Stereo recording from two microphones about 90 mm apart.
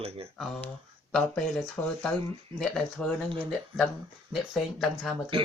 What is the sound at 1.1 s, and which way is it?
Speech, 5° left (ahead or behind).